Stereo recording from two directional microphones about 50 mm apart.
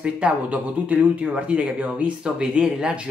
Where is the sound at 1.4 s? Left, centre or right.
Right.